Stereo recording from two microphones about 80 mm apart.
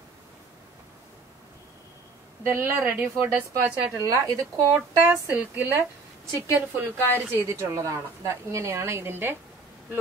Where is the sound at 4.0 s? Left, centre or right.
Right.